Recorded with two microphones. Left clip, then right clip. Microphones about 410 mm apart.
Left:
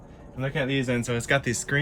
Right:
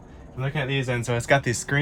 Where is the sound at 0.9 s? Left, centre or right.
Centre.